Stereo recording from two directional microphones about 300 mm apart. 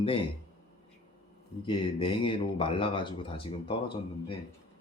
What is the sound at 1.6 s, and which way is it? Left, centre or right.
Speech, centre.